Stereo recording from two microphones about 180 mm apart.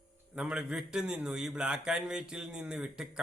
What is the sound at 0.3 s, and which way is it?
A man's voice, 5° right (ahead or behind).